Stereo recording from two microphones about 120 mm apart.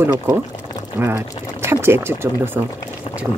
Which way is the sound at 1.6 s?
20° right (ahead or behind).